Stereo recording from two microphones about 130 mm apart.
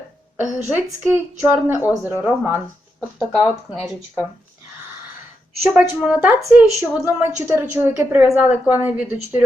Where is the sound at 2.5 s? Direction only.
Centre (ahead or behind).